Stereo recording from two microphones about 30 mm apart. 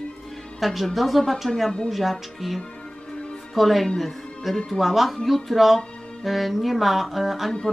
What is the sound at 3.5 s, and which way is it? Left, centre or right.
Speech, centre.